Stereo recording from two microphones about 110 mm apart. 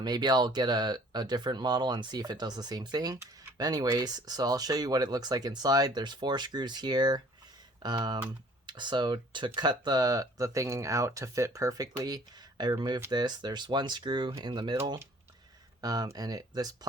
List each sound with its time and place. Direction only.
0.0 s speech: 40° right (ahead or behind)